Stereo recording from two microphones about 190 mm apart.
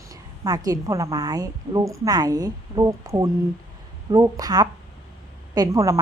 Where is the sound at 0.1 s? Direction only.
20° right (ahead or behind).